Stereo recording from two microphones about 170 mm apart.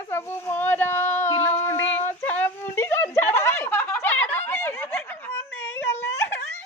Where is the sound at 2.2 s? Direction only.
10° left (ahead or behind).